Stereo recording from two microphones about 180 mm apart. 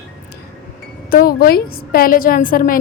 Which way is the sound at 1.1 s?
55° left (ahead or behind).